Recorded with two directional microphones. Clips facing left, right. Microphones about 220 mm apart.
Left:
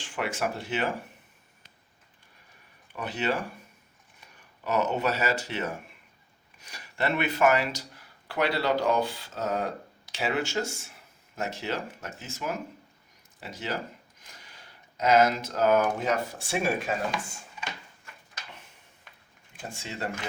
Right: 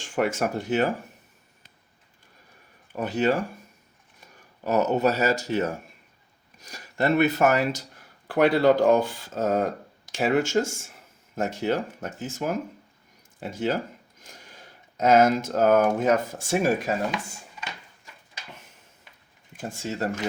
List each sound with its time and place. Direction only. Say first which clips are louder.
0.0 s speech: right 6 dB; 45° right (ahead or behind)
2.9 s speech: right 6 dB; 45° right (ahead or behind)
4.6 s speech: right 5 dB; 40° right (ahead or behind)
19.8 s speech: right 7 dB; 45° right (ahead or behind)